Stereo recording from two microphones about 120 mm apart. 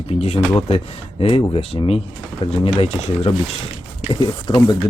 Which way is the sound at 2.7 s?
60° left (ahead or behind).